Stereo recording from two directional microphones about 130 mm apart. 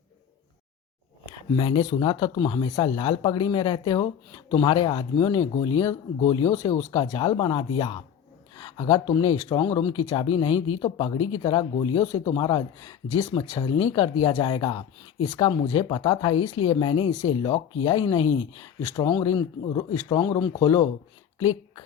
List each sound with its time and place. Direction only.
1.5 s speech: 40° left (ahead or behind)
15.3 s speech: 30° left (ahead or behind)